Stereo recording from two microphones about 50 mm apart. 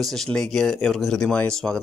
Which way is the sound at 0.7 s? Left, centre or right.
Centre.